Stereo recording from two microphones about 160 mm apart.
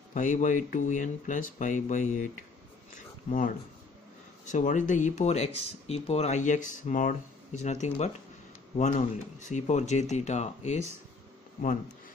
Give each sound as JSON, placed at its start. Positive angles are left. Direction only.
{"t": 0.1, "sound": "speech", "side_deg": 50}